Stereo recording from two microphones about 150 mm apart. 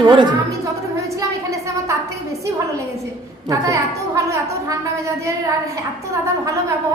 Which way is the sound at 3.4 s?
20° right (ahead or behind).